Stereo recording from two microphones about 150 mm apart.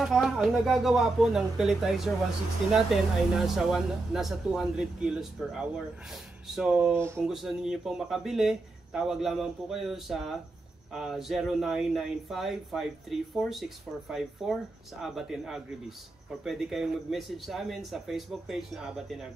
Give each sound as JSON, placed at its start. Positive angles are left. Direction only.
{"t": 0.0, "sound": "speech", "side_deg": -5}
{"t": 6.9, "sound": "speech", "side_deg": -15}
{"t": 7.2, "sound": "speech", "side_deg": -5}